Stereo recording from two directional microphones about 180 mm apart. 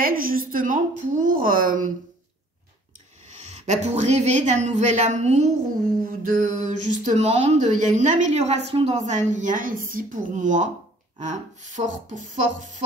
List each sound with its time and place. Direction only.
0.0 s a woman's voice: 50° right (ahead or behind)
3.4 s a woman's voice: 40° right (ahead or behind)
5.9 s a woman's voice: 50° right (ahead or behind)